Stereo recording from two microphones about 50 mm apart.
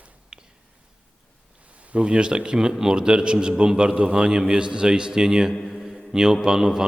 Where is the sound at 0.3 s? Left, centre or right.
Centre.